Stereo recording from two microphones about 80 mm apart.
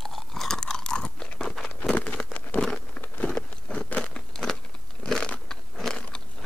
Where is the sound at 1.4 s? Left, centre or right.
Centre.